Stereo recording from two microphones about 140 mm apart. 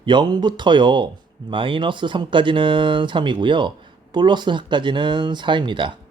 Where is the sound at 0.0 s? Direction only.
35° right (ahead or behind).